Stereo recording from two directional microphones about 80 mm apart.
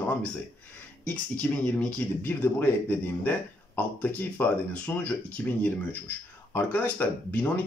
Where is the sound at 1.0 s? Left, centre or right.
Centre.